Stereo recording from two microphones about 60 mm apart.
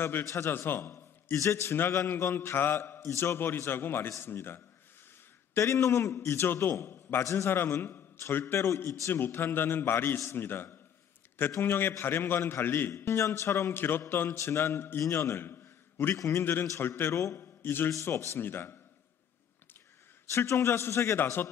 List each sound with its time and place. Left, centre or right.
0.2 s a man's voice: left
0.5 s a man's voice: left
1.3 s speech: left
3.3 s a man's voice: left
5.6 s speech: left
6.7 s a man's voice: left
9.1 s a man's voice: left
10.1 s speech: left
10.4 s a man's voice: left
12.9 s speech: left
15.0 s speech: left
17.4 s a man's voice: left
20.2 s speech: left
21.2 s a man's voice: left